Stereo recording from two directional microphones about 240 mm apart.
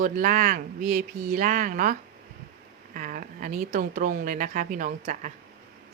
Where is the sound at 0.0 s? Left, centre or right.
Right.